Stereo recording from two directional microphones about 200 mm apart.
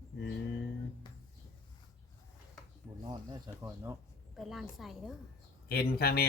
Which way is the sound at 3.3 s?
15° right (ahead or behind).